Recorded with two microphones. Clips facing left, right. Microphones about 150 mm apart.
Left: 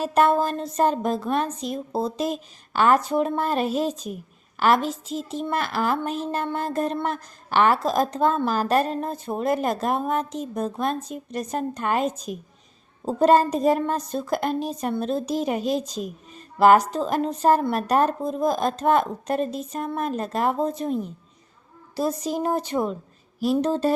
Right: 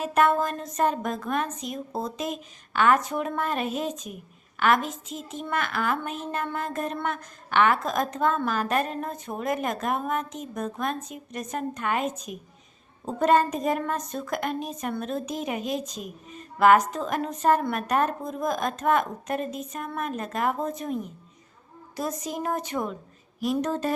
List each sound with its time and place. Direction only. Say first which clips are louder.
0.0 s speech: left 3 dB; 35° left (ahead or behind)